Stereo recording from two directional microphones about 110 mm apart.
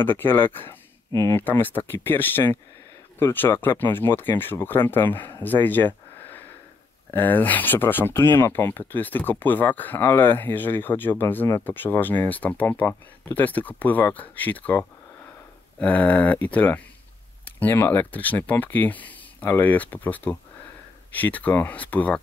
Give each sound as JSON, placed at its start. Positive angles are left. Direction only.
{"t": 0.0, "sound": "speech", "side_deg": 20}